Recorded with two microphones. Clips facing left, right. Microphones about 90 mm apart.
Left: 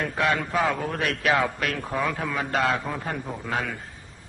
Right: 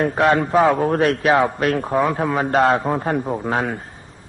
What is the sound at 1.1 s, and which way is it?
A man's voice, 35° right (ahead or behind).